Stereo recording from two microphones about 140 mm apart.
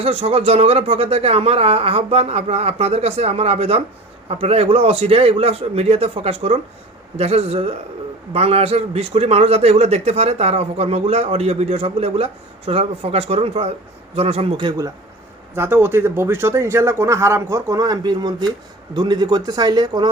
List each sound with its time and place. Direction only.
0.0 s a man's voice: 45° right (ahead or behind)
15.5 s speech: 15° right (ahead or behind)